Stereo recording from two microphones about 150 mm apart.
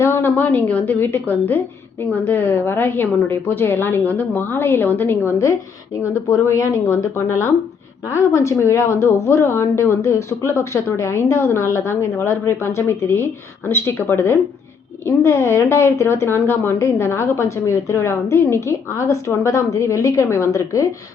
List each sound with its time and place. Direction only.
0.0 s a woman's voice: 15° left (ahead or behind)